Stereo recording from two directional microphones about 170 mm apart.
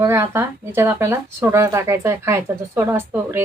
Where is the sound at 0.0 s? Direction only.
15° right (ahead or behind).